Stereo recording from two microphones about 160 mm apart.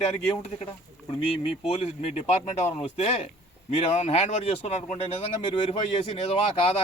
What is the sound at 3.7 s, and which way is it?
Speech, 40° left (ahead or behind).